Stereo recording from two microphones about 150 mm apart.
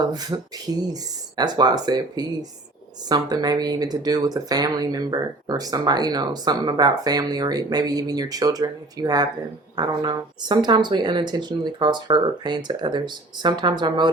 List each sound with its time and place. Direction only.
0.1 s speech: 25° right (ahead or behind)